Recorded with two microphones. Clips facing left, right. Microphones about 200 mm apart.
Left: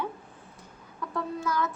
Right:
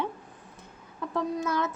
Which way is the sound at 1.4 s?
25° right (ahead or behind).